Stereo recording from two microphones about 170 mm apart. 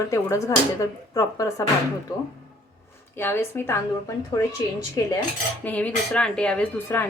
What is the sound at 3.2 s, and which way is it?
Speech, 15° left (ahead or behind).